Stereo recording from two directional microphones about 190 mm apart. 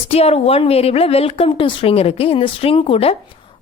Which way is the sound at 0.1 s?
30° left (ahead or behind).